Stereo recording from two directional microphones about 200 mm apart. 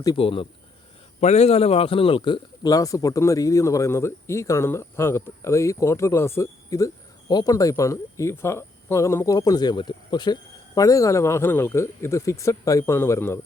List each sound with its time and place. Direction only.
0.0 s a man's voice: 25° left (ahead or behind)